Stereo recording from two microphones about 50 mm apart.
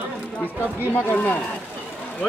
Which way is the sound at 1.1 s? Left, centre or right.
Left.